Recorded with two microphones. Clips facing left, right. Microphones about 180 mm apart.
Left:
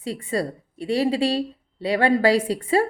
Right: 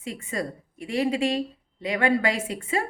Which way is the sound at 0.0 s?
30° left (ahead or behind).